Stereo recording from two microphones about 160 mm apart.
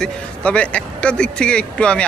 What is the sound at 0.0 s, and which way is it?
Speech, 10° left (ahead or behind).